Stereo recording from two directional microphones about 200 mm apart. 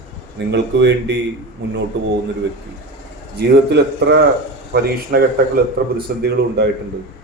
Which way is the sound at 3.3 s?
55° right (ahead or behind).